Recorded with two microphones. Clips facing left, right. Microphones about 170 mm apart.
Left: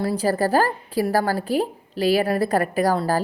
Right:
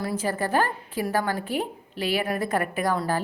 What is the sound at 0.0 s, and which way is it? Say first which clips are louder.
A woman's voice: left 6 dB; 35° left (ahead or behind).